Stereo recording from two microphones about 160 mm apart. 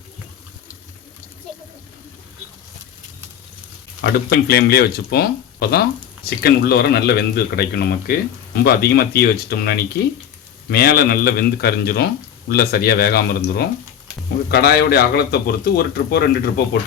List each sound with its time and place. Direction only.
4.0 s speech: 85° left